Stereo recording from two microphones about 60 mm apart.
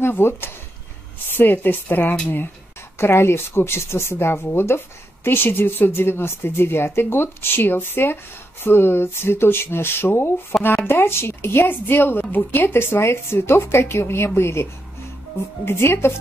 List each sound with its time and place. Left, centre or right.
0.0 s speech: left